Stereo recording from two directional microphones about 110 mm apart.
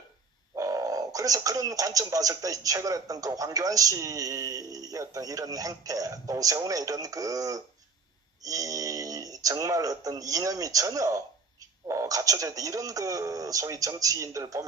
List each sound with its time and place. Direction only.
0.6 s speech: 30° right (ahead or behind)